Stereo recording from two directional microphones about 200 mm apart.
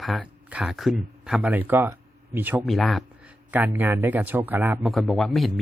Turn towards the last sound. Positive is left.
turn(degrees=0)  # may be behind; listen again after turning